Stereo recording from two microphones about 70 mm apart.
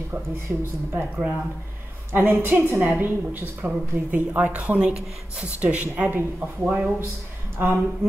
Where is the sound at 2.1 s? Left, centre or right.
Right.